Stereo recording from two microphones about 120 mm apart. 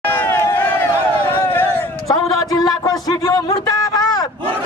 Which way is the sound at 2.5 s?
30° left (ahead or behind).